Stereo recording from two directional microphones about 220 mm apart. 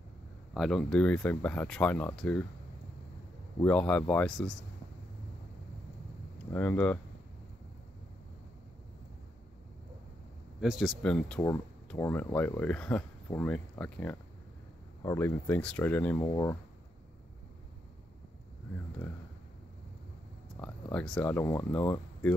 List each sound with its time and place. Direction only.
0.6 s speech: centre (ahead or behind)
3.6 s speech: 5° left (ahead or behind)
6.5 s speech: 10° left (ahead or behind)
10.6 s speech: centre (ahead or behind); by 16.5 s 15° left (ahead or behind)
19.0 s speech: 5° left (ahead or behind)
20.5 s speech: 5° left (ahead or behind)